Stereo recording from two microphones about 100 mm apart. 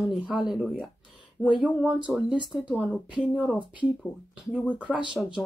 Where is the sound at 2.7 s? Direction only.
15° left (ahead or behind).